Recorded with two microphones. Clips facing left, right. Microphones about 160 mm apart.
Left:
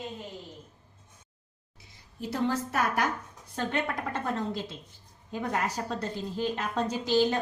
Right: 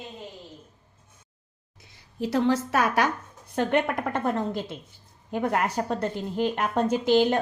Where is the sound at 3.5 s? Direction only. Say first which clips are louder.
Right 7 dB; 60° right (ahead or behind).